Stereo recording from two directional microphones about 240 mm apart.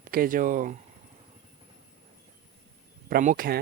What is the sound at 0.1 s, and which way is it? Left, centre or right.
Speech, right.